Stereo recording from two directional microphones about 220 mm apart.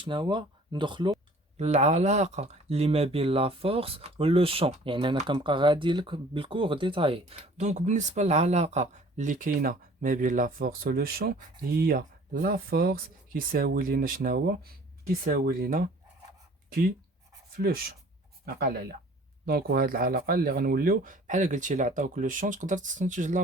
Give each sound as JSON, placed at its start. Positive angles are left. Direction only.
{"t": 0.0, "sound": "speech", "side_deg": -20}
{"t": 17.5, "sound": "speech", "side_deg": -45}